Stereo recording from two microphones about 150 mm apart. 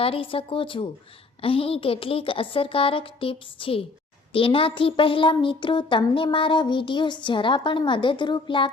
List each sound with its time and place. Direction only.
0.0 s speech: 35° left (ahead or behind)